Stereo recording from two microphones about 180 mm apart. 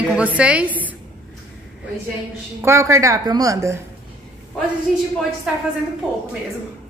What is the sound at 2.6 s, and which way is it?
A woman's voice, 15° right (ahead or behind).